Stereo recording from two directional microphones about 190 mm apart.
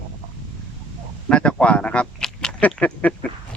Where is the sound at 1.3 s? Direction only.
5° left (ahead or behind).